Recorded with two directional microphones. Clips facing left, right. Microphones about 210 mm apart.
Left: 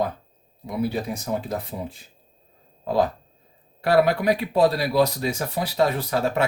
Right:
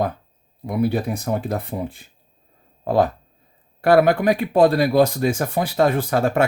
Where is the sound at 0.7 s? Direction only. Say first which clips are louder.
Right 5 dB; 55° right (ahead or behind).